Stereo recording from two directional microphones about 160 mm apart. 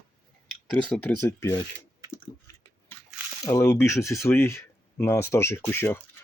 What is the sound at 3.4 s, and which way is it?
Speech, 20° left (ahead or behind).